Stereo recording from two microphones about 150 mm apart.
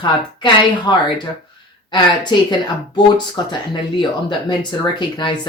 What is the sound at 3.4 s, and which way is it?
Speech, 30° left (ahead or behind).